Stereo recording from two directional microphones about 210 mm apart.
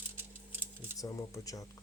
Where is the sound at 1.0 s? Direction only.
15° left (ahead or behind).